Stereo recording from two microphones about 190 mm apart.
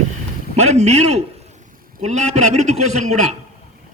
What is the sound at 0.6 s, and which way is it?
Speech, 35° right (ahead or behind).